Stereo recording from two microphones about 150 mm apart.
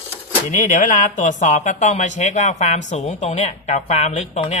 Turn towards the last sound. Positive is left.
turn(degrees=50)  # may be behind; listen again after turning